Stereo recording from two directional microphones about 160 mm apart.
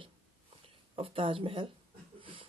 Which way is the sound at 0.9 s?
35° right (ahead or behind).